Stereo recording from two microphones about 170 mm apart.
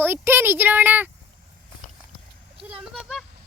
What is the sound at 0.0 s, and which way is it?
Speech, 10° right (ahead or behind).